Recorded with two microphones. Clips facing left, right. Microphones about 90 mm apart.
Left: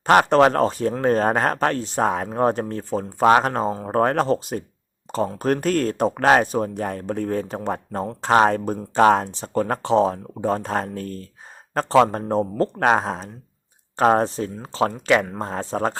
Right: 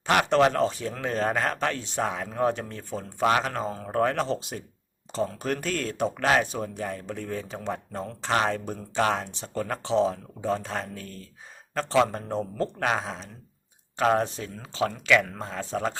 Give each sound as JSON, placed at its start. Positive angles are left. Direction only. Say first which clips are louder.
{"t": 0.0, "sound": "speech", "louder": "left 6 dB", "side_deg": 45}